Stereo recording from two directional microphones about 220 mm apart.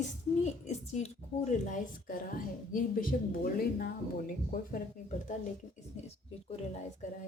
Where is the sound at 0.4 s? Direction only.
30° left (ahead or behind).